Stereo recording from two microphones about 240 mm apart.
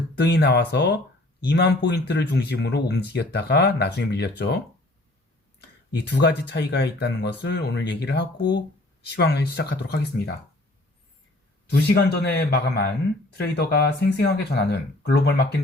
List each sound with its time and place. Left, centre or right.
0.2 s speech: left
11.7 s speech: left